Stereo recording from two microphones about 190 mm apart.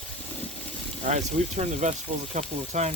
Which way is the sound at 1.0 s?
40° right (ahead or behind).